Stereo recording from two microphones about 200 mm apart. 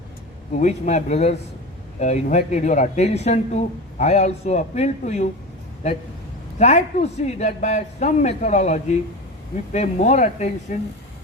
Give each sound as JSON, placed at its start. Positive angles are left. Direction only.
{"t": 0.5, "sound": "a man's voice", "side_deg": 35}
{"t": 6.6, "sound": "a man's voice", "side_deg": 35}